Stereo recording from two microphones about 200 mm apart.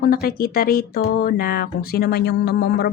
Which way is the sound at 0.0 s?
50° left (ahead or behind).